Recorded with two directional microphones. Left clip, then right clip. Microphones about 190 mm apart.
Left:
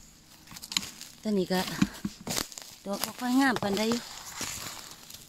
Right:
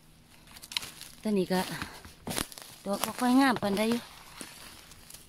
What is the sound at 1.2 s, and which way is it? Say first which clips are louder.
Speech: even; 5° left (ahead or behind).